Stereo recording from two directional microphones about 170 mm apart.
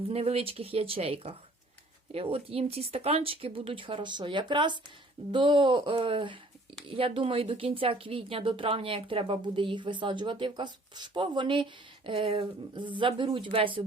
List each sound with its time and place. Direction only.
0.1 s speech: 35° right (ahead or behind)